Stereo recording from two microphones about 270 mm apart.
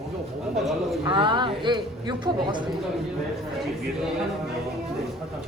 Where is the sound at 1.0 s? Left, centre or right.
Centre.